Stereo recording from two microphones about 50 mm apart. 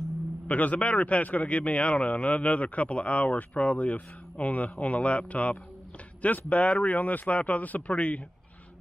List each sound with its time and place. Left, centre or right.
0.5 s speech: left